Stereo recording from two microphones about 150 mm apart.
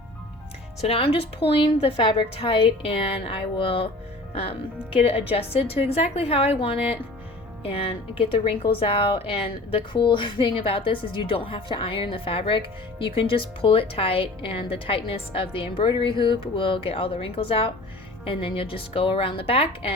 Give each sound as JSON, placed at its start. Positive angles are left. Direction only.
{"t": 0.8, "sound": "a woman's voice", "side_deg": 40}